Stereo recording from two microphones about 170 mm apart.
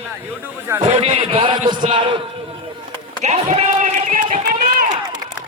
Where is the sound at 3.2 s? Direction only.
40° right (ahead or behind).